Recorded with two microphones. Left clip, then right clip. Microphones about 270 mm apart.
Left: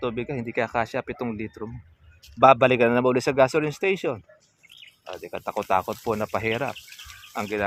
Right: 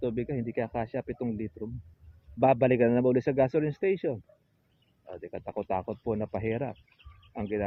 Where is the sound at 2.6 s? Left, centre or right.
Left.